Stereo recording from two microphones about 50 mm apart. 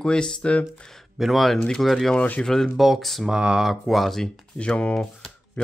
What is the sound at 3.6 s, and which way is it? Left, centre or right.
Speech, centre.